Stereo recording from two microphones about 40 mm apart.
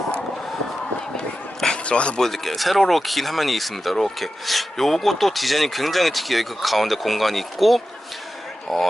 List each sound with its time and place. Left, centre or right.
1.8 s speech: left
2.2 s speech: centre